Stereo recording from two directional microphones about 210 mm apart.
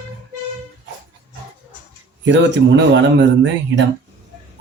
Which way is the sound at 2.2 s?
60° right (ahead or behind).